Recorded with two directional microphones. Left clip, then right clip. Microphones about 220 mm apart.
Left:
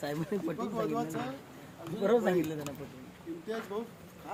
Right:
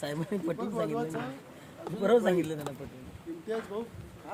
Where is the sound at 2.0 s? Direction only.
50° right (ahead or behind).